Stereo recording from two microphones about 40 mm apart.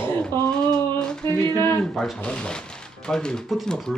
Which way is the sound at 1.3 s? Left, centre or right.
Left.